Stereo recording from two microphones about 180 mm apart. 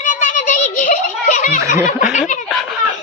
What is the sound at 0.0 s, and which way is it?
Children playing, 45° left (ahead or behind).